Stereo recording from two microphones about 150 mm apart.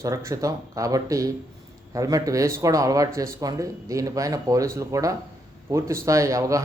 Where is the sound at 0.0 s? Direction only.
20° right (ahead or behind).